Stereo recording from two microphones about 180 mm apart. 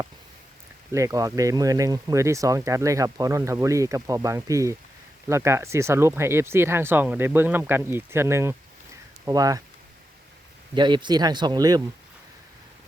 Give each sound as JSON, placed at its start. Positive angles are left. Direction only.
{"t": 0.9, "sound": "speech", "side_deg": -20}
{"t": 10.8, "sound": "speech", "side_deg": -25}